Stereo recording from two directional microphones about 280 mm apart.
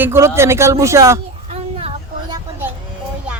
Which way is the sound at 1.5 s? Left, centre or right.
Right.